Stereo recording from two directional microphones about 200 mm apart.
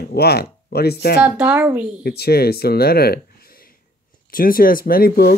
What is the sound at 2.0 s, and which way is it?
Speech, 50° left (ahead or behind).